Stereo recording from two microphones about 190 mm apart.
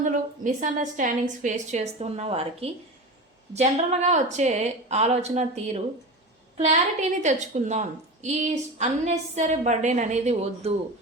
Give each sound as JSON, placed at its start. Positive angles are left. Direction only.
{"t": 0.0, "sound": "a woman's voice", "side_deg": -40}
{"t": 7.2, "sound": "a woman's voice", "side_deg": -40}